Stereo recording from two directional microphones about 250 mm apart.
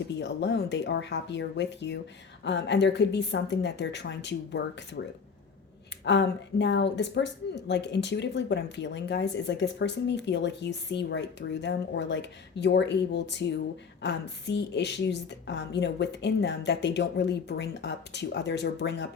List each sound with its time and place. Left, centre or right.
0.2 s a woman's voice: left
6.1 s a woman's voice: left